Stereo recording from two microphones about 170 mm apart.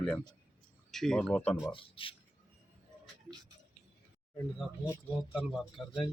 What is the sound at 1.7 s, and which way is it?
Speech, 30° left (ahead or behind).